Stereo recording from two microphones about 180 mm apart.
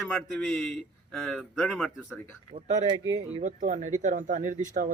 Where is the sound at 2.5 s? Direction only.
35° right (ahead or behind).